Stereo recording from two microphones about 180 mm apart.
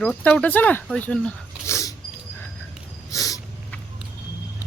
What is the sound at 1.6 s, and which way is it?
Dog, 15° left (ahead or behind).